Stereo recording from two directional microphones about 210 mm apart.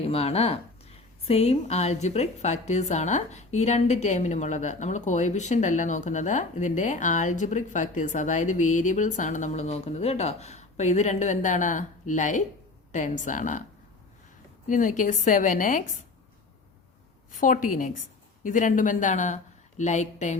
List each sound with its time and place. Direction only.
0.0 s a woman's voice: 30° left (ahead or behind)
14.7 s a woman's voice: 40° left (ahead or behind)
17.3 s a woman's voice: 40° left (ahead or behind)